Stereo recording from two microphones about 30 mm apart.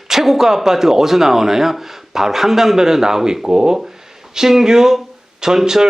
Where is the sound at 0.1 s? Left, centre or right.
Centre.